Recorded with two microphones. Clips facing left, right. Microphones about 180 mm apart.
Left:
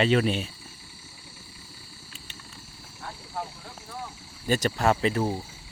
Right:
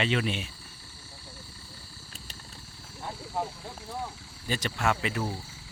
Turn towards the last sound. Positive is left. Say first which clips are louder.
# left 5 dB
turn(degrees=35)  # may be behind; listen again after turning